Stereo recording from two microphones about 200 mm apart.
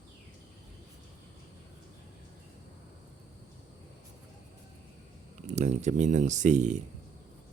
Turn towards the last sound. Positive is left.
turn(degrees=-35)  # may be behind; listen again after turning